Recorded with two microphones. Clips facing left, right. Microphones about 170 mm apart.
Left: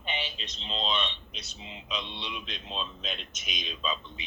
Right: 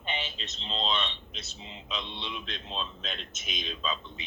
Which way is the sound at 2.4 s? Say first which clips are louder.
Even; 15° left (ahead or behind).